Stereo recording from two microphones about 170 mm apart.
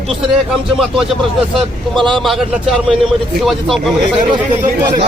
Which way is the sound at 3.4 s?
Centre (ahead or behind).